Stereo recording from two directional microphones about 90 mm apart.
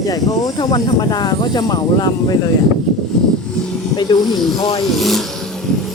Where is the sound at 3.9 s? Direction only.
50° left (ahead or behind).